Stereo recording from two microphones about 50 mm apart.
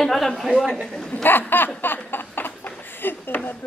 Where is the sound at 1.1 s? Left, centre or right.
Left.